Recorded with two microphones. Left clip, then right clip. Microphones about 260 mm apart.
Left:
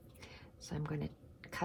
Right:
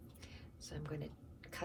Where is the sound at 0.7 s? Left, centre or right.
Left.